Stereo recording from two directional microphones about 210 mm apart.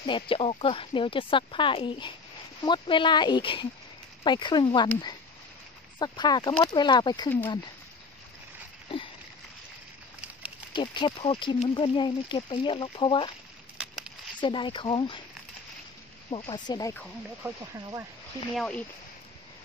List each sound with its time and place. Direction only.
0.0 s speech: 25° left (ahead or behind)
5.9 s speech: 20° left (ahead or behind)
10.7 s speech: 25° left (ahead or behind)
13.8 s a sound: 5° right (ahead or behind)
14.4 s speech: 25° left (ahead or behind)
16.3 s speech: 20° left (ahead or behind)
17.4 s speech: 15° right (ahead or behind)
18.6 s speech: 5° left (ahead or behind)